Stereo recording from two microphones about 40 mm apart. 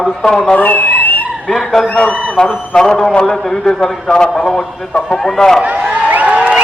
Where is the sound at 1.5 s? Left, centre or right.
Centre.